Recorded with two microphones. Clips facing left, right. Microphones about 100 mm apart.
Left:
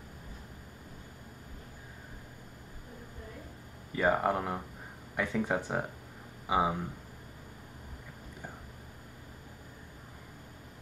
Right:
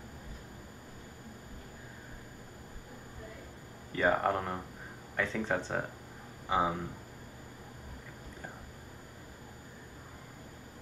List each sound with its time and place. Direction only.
3.9 s speech: 5° left (ahead or behind)